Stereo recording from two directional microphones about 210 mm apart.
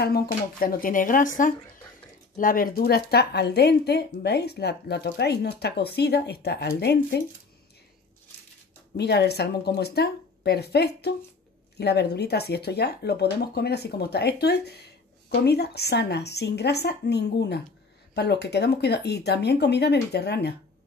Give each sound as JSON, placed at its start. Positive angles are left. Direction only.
{"t": 0.0, "sound": "speech", "side_deg": 45}
{"t": 8.9, "sound": "speech", "side_deg": 50}